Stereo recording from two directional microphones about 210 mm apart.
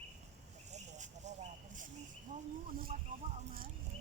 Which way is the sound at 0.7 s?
35° right (ahead or behind).